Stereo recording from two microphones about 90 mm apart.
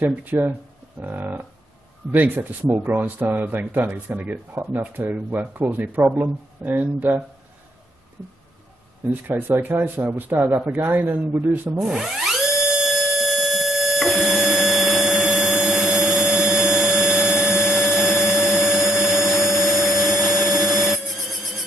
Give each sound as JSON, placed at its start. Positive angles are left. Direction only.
{"t": 0.0, "sound": "speech", "side_deg": -20}
{"t": 9.3, "sound": "speech", "side_deg": -20}
{"t": 11.8, "sound": "a sound", "side_deg": -5}
{"t": 14.2, "sound": "printer", "side_deg": -5}
{"t": 15.6, "sound": "tools", "side_deg": -5}
{"t": 17.6, "sound": "a sound", "side_deg": -5}
{"t": 20.6, "sound": "music", "side_deg": 0}